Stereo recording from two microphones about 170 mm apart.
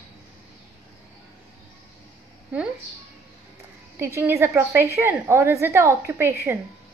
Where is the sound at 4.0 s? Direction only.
15° right (ahead or behind).